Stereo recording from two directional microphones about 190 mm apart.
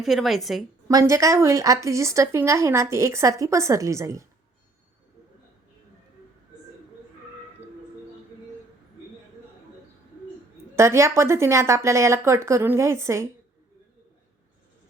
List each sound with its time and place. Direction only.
0.0 s a woman's voice: centre (ahead or behind)
0.9 s speech: 20° right (ahead or behind)
10.8 s speech: 15° right (ahead or behind)